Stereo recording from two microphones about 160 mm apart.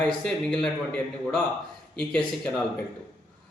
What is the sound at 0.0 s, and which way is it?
Speech, 5° left (ahead or behind).